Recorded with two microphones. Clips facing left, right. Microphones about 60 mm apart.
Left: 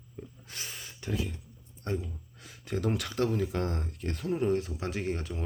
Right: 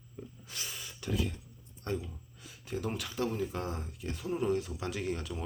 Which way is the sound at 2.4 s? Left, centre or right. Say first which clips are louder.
Left 4 dB; left.